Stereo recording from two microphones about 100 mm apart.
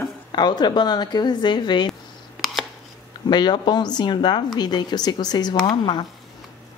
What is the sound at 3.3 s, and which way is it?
Speech, 45° left (ahead or behind).